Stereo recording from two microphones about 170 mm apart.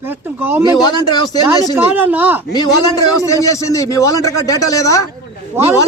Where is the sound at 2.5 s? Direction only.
20° left (ahead or behind).